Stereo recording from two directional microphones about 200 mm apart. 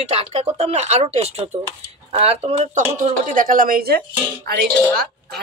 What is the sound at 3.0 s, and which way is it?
Speech, 40° right (ahead or behind).